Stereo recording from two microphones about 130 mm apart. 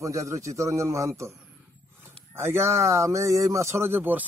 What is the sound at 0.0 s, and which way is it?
Speech, 25° right (ahead or behind).